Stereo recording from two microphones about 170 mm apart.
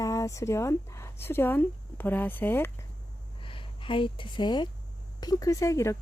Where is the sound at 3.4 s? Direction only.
30° left (ahead or behind).